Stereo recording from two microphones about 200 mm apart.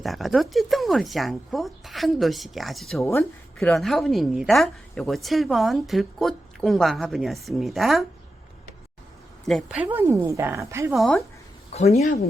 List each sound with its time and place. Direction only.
0.0 s a woman's voice: centre (ahead or behind)
3.0 s a woman's voice: 10° left (ahead or behind)
9.5 s speech: centre (ahead or behind)
10.9 s a woman's voice: centre (ahead or behind)
11.7 s speech: 35° left (ahead or behind)